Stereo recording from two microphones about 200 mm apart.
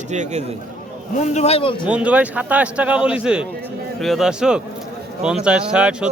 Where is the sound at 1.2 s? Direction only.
35° left (ahead or behind).